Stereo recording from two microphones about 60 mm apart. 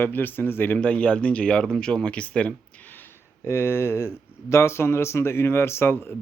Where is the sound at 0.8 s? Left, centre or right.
Left.